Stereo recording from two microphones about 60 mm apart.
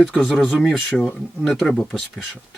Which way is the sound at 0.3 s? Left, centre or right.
Centre.